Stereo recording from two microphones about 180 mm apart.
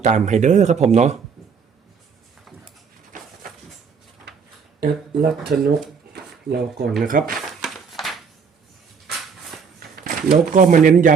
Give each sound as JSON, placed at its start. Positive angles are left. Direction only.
{"t": 0.0, "sound": "speech", "side_deg": -40}
{"t": 4.8, "sound": "speech", "side_deg": -55}
{"t": 6.1, "sound": "drawer open or close", "side_deg": -60}
{"t": 7.0, "sound": "speech", "side_deg": -50}
{"t": 7.3, "sound": "a sound", "side_deg": 0}
{"t": 9.9, "sound": "speech", "side_deg": -55}